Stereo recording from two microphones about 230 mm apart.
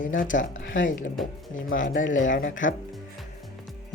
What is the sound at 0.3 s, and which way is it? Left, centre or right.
Speech, left.